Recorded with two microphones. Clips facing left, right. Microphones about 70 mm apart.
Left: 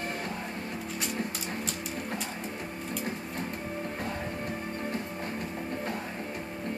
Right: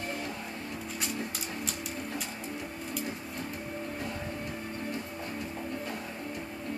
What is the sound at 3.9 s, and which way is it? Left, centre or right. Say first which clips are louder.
Music: left 2 dB; left.